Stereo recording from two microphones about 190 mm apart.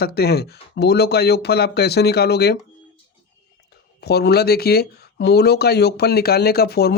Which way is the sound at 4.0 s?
60° left (ahead or behind).